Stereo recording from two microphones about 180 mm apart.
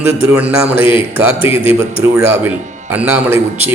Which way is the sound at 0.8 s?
30° left (ahead or behind).